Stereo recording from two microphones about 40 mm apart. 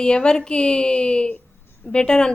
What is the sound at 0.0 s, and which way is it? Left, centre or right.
A woman's voice, left.